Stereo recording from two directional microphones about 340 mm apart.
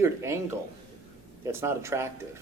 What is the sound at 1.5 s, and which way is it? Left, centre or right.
Speech, centre.